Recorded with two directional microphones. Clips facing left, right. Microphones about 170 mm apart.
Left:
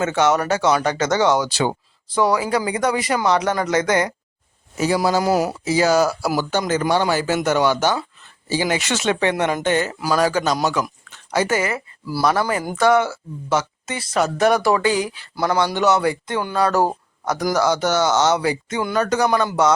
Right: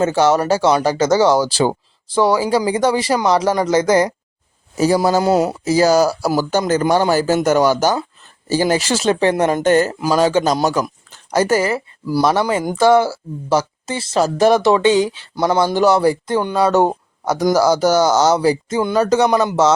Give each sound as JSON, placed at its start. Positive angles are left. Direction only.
{"t": 0.0, "sound": "speech", "side_deg": -35}
{"t": 5.2, "sound": "speech", "side_deg": -25}
{"t": 5.6, "sound": "speech", "side_deg": -40}
{"t": 10.0, "sound": "speech", "side_deg": -25}
{"t": 10.4, "sound": "speech", "side_deg": -35}
{"t": 12.0, "sound": "speech", "side_deg": -25}
{"t": 16.4, "sound": "speech", "side_deg": -20}